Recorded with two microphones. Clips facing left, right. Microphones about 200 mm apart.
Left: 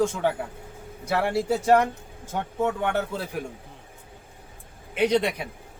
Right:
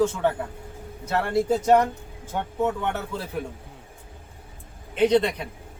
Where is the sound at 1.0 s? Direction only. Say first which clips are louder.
Even; 10° left (ahead or behind).